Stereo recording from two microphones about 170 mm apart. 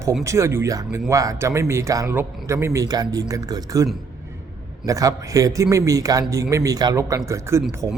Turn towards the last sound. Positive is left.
turn(degrees=-20)  # may be behind; listen again after turning